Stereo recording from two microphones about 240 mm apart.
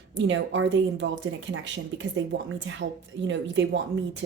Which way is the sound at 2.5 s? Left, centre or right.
Right.